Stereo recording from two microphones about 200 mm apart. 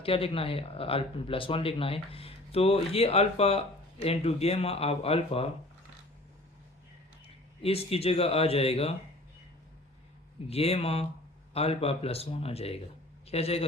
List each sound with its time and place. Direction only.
0.0 s speech: 30° left (ahead or behind)
7.6 s speech: 30° left (ahead or behind)
10.5 s a man's voice: 30° left (ahead or behind)